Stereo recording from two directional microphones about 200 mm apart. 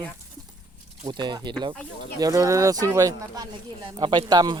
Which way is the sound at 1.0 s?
20° right (ahead or behind).